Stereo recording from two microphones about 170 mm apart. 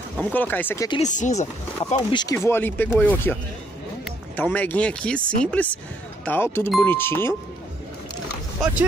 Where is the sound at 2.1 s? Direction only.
20° left (ahead or behind).